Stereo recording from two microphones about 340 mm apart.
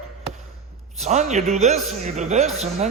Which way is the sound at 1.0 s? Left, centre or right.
Right.